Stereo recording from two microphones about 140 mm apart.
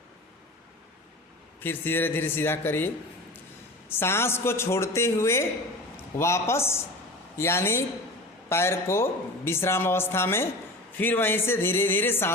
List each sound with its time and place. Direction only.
1.6 s a man's voice: 15° left (ahead or behind)